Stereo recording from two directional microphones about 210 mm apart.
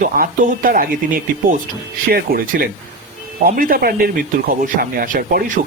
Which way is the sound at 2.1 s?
45° right (ahead or behind).